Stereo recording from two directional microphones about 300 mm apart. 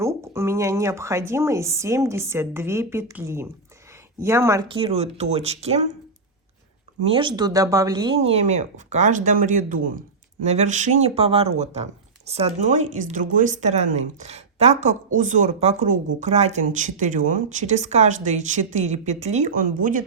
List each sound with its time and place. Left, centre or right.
0.0 s a woman's voice: centre
7.2 s speech: centre